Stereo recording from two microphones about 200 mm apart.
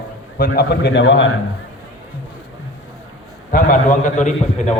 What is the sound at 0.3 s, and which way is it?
Speech, 50° left (ahead or behind).